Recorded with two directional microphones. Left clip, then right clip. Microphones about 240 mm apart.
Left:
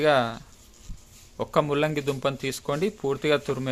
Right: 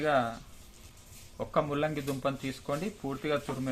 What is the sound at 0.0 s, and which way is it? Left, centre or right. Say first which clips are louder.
Speech: left 7 dB; left.